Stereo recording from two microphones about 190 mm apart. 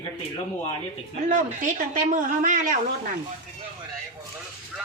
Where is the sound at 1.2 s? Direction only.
45° right (ahead or behind).